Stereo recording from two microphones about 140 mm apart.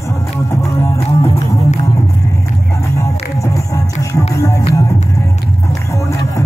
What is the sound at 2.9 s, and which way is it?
Music, 25° left (ahead or behind).